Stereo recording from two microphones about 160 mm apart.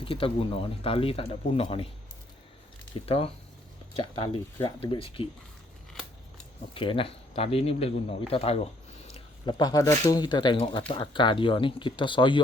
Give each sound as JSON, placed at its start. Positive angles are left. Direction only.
{"t": 0.0, "sound": "speech", "side_deg": 35}
{"t": 3.1, "sound": "speech", "side_deg": 35}
{"t": 5.9, "sound": "scissors", "side_deg": 0}
{"t": 6.7, "sound": "speech", "side_deg": 35}
{"t": 9.1, "sound": "speech", "side_deg": 30}